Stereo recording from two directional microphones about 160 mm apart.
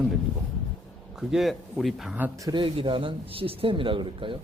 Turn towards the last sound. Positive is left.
turn(degrees=-30)  # may be behind; listen again after turning